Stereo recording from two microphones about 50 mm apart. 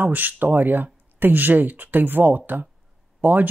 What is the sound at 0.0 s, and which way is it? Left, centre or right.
Speech, right.